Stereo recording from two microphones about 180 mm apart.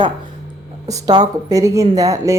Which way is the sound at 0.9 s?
20° right (ahead or behind).